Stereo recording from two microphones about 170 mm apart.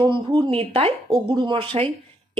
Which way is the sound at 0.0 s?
30° right (ahead or behind).